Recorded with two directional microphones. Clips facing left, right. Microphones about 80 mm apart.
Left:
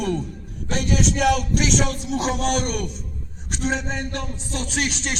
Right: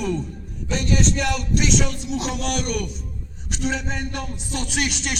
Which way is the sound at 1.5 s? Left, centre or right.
Left.